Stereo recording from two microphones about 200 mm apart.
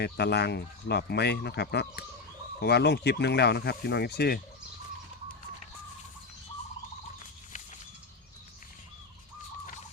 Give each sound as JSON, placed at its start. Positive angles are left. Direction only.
{"t": 0.0, "sound": "speech", "side_deg": 55}